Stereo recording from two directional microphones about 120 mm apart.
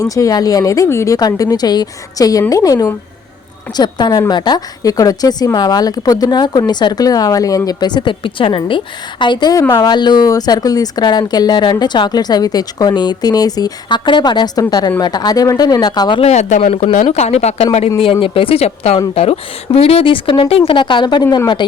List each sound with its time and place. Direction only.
0.0 s speech: 30° left (ahead or behind)
16.2 s a woman's voice: 70° left (ahead or behind); by 21.7 s 35° left (ahead or behind)